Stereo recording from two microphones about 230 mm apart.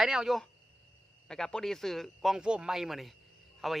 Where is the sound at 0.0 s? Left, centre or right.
Centre.